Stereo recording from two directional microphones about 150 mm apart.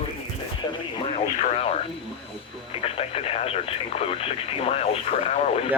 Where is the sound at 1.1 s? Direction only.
45° left (ahead or behind).